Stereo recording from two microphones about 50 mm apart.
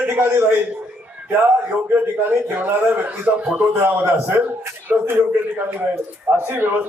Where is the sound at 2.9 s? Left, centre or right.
Right.